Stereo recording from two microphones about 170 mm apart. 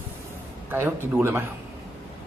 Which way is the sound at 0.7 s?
15° right (ahead or behind).